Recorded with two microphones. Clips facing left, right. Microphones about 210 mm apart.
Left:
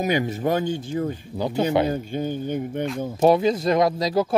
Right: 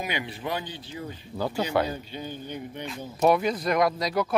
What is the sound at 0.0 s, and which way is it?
Speech, 45° left (ahead or behind).